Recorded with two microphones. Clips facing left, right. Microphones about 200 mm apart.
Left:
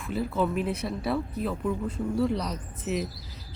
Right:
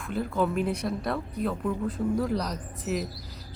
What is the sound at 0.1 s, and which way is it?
Speech, centre (ahead or behind).